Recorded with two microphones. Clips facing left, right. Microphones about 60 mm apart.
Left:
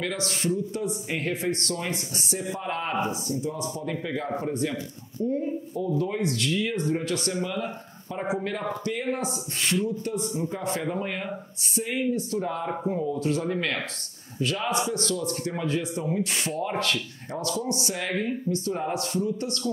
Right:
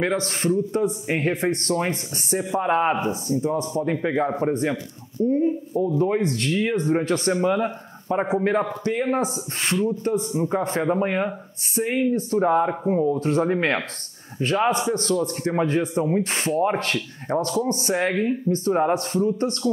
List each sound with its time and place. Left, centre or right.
0.0 s speech: right